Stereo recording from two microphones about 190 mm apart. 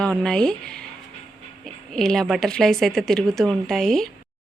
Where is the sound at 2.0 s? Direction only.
Centre (ahead or behind).